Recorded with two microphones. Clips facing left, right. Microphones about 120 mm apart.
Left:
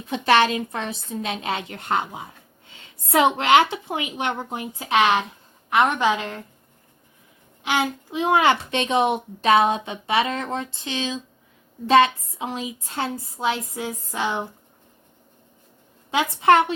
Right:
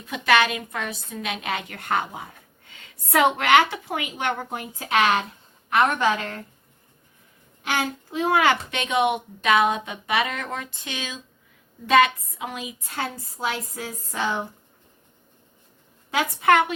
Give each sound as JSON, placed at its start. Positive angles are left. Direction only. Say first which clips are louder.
{"t": 0.1, "sound": "a child's voice", "louder": "left 2 dB", "side_deg": 30}
{"t": 7.6, "sound": "a child's voice", "louder": "left 3 dB", "side_deg": 15}
{"t": 13.5, "sound": "speech", "louder": "left 4 dB", "side_deg": 20}
{"t": 16.1, "sound": "a child's voice", "louder": "left 2 dB", "side_deg": 25}